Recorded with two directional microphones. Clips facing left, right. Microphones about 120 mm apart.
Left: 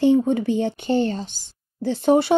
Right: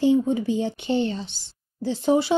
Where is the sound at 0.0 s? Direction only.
60° left (ahead or behind).